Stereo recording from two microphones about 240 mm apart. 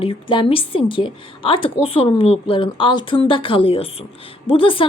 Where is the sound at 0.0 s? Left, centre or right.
Left.